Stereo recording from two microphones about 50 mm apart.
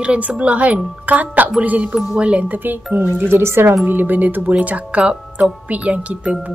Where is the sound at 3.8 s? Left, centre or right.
Right.